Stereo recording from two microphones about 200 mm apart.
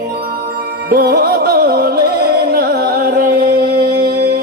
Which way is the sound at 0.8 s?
50° right (ahead or behind).